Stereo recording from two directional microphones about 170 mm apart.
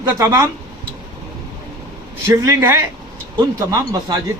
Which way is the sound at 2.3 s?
15° right (ahead or behind).